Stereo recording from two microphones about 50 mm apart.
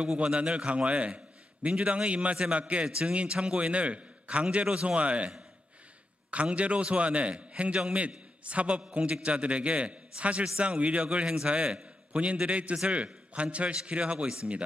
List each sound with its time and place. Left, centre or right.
0.2 s a man's voice: right
6.3 s a man's voice: right